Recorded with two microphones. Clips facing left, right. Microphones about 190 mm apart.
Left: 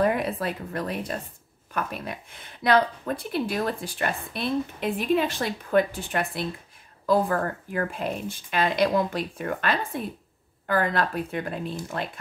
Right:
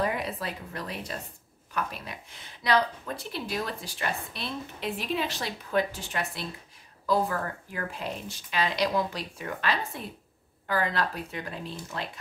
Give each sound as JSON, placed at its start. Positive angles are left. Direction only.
{"t": 0.0, "sound": "a woman's voice", "side_deg": 55}